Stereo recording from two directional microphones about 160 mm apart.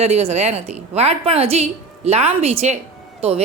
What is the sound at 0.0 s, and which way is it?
A woman's voice, 40° right (ahead or behind).